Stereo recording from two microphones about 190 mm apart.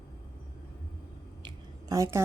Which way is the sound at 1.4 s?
15° right (ahead or behind).